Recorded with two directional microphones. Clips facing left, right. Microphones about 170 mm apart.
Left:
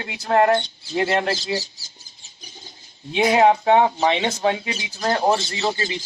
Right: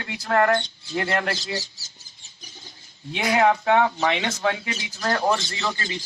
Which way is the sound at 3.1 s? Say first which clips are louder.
Left 4 dB; 25° left (ahead or behind).